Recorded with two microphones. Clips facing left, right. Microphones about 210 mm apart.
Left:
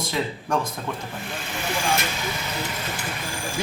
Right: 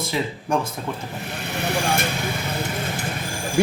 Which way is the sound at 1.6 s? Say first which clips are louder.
Right 3 dB; 60° right (ahead or behind).